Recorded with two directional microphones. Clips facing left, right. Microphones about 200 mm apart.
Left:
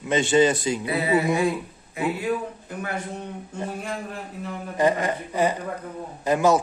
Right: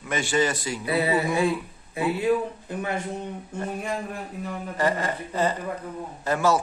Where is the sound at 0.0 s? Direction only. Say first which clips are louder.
Left 6 dB; 20° left (ahead or behind).